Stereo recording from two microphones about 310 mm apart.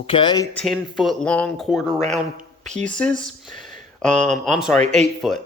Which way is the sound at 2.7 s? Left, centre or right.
Right.